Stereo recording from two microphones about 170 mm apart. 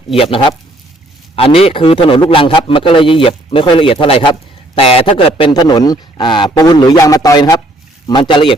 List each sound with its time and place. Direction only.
0.2 s a man's voice: 30° left (ahead or behind)